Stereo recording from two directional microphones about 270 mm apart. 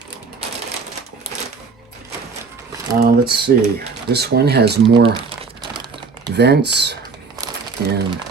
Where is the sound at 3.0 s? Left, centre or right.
Right.